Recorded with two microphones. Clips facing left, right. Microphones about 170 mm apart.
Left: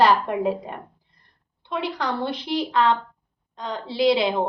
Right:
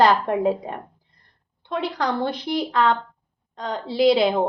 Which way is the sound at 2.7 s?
45° right (ahead or behind).